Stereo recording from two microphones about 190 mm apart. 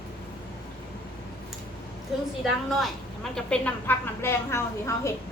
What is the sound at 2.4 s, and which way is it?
A woman's voice, centre (ahead or behind).